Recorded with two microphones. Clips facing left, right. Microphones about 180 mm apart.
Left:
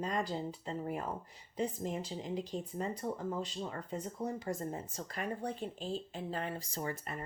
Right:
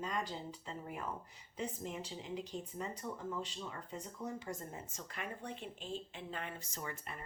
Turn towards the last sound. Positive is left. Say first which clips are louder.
# left 6 dB
turn(degrees=35)  # may be behind; listen again after turning